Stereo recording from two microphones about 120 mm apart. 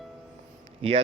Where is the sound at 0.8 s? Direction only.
50° right (ahead or behind).